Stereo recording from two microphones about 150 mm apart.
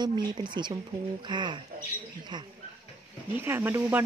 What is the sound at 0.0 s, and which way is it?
Speech, 30° right (ahead or behind).